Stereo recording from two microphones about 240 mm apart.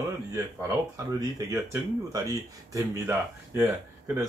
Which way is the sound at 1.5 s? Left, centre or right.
Centre.